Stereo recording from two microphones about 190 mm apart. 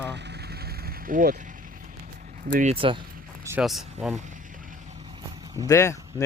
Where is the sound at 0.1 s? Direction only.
65° right (ahead or behind); by 1.5 s 45° right (ahead or behind).